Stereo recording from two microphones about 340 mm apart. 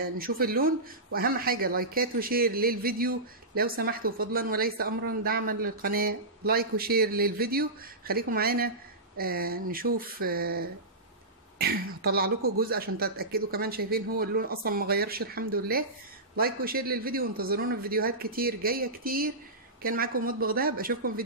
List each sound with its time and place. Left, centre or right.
0.2 s speech: right